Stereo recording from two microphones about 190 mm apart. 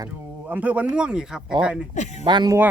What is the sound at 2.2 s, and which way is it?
Speech, 20° right (ahead or behind).